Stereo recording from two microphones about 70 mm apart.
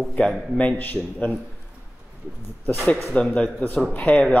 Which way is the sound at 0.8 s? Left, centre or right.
Left.